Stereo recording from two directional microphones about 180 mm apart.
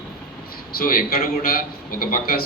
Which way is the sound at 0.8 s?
55° left (ahead or behind).